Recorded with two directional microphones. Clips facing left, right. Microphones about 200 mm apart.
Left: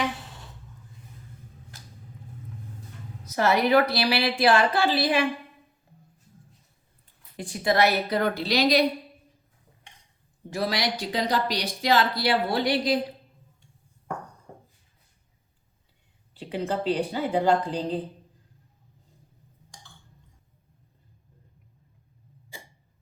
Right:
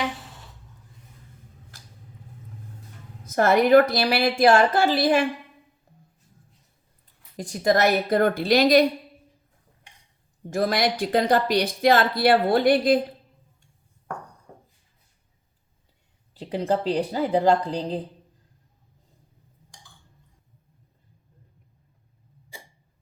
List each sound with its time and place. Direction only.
3.2 s speech: 50° right (ahead or behind)
7.3 s speech: 40° right (ahead or behind)
10.5 s speech: 50° right (ahead or behind)
16.3 s a woman's voice: 40° right (ahead or behind)